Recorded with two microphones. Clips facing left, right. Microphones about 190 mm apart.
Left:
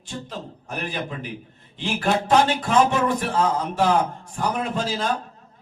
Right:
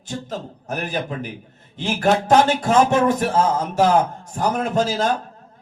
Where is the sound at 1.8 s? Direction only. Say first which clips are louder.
Right 4 dB; 45° right (ahead or behind).